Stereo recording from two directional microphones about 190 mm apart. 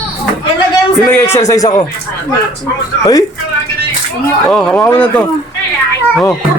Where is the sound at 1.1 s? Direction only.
15° left (ahead or behind).